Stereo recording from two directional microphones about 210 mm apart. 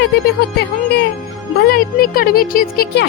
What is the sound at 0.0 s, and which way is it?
Speech, 50° left (ahead or behind).